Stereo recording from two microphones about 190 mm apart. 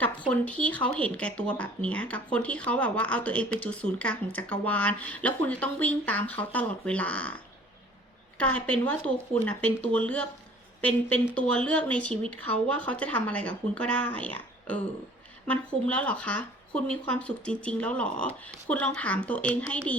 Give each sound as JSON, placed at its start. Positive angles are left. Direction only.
{"t": 0.0, "sound": "speech", "side_deg": 5}
{"t": 8.4, "sound": "speech", "side_deg": 5}